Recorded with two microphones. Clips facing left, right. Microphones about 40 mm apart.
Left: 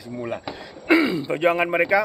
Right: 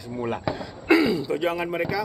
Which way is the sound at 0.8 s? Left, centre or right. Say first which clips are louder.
Left 1 dB; left.